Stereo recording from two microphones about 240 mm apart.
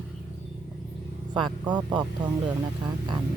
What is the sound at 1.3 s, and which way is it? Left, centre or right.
Speech, centre.